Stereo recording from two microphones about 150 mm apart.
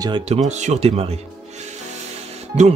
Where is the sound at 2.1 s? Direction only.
50° right (ahead or behind).